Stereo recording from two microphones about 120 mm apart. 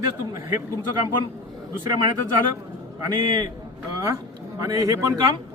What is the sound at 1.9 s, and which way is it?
Speech, 35° right (ahead or behind).